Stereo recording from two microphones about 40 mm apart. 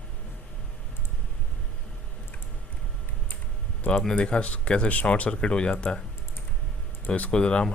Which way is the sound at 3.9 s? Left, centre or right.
Left.